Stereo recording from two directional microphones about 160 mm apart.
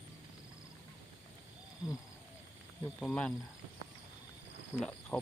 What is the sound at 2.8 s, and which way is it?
Speech, 5° left (ahead or behind).